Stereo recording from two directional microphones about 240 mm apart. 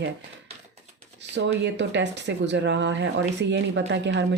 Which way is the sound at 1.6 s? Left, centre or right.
Right.